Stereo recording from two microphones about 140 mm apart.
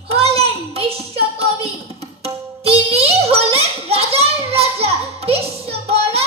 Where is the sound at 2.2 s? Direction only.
45° right (ahead or behind).